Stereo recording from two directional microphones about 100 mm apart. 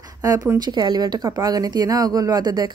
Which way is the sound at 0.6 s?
45° right (ahead or behind).